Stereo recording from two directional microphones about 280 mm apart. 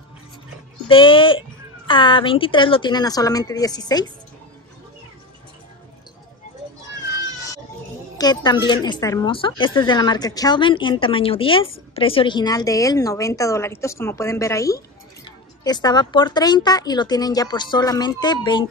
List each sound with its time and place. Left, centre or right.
0.8 s a child's voice: centre
8.2 s a woman's voice: centre